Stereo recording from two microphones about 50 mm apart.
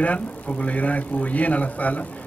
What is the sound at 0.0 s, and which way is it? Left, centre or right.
A man's voice, left.